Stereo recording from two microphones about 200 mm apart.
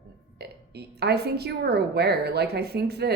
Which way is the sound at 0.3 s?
55° right (ahead or behind).